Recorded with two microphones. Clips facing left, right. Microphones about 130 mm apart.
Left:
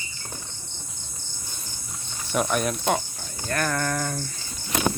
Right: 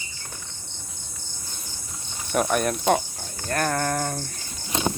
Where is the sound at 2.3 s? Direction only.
50° right (ahead or behind).